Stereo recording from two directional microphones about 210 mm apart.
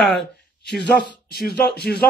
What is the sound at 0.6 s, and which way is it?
Speech, 55° left (ahead or behind).